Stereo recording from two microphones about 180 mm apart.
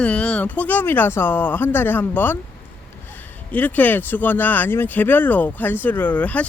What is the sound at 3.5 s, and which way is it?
Speech, 10° left (ahead or behind).